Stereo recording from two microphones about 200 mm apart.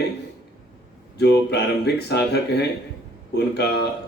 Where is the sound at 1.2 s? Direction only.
55° left (ahead or behind).